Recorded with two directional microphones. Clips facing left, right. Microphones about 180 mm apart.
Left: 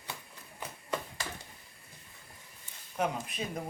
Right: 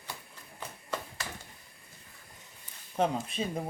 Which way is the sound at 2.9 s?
30° right (ahead or behind).